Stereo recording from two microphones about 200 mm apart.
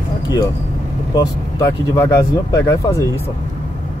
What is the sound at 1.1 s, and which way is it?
Speech, 15° left (ahead or behind).